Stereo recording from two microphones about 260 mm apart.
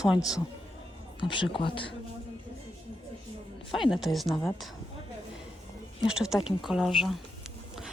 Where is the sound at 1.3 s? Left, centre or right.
Centre.